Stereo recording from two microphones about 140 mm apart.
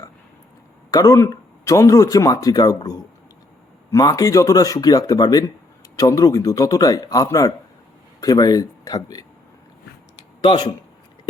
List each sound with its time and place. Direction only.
0.9 s speech: 25° left (ahead or behind)
10.4 s speech: 35° left (ahead or behind)